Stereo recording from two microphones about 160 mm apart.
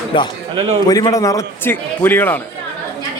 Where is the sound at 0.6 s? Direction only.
35° right (ahead or behind).